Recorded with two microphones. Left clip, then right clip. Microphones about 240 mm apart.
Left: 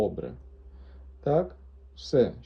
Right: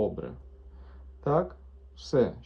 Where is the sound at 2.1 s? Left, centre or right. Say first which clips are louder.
Left 2 dB; centre.